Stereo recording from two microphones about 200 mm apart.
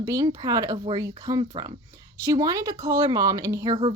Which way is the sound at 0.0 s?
15° right (ahead or behind).